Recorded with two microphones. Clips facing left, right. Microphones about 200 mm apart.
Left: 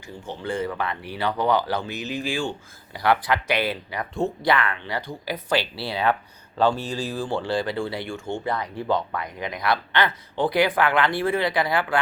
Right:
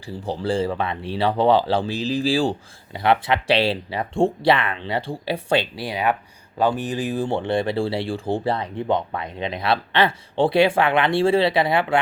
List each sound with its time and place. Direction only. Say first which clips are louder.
0.1 s speech: right 6 dB; 35° right (ahead or behind)
3.0 s speech: right 2 dB; 25° right (ahead or behind)
5.7 s speech: right 1 dB; 15° right (ahead or behind)